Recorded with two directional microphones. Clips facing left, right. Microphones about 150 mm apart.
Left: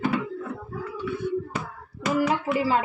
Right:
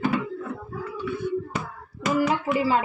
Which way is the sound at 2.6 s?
Centre (ahead or behind).